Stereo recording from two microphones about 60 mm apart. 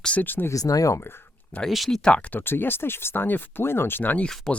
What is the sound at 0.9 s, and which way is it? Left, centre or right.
Speech, left.